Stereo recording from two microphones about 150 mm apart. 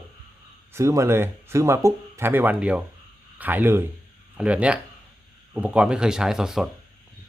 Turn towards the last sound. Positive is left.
turn(degrees=-5)  # may be behind; listen again after turning